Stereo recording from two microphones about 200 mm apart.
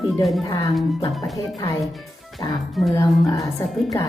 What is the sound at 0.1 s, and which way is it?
Speech, centre (ahead or behind).